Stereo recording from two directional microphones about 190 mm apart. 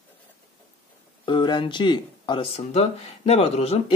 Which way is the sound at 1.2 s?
25° left (ahead or behind).